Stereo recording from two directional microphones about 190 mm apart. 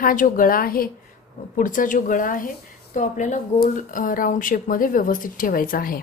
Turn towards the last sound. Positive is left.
turn(degrees=50)  # may be behind; listen again after turning